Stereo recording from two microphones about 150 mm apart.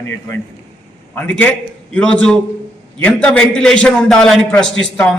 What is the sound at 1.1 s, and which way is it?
A man's voice, 10° left (ahead or behind).